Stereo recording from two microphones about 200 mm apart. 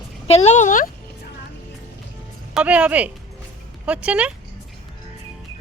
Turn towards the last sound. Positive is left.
turn(degrees=-5)  # may be behind; listen again after turning